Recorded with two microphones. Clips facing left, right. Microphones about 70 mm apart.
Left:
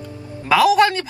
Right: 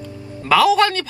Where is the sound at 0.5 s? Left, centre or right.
Centre.